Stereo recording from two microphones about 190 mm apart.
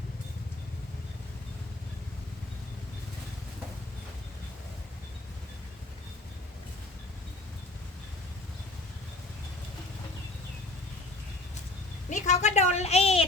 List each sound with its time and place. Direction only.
12.0 s a woman's voice: 40° left (ahead or behind)